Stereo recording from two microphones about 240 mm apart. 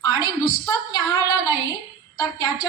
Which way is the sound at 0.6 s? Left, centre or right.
Centre.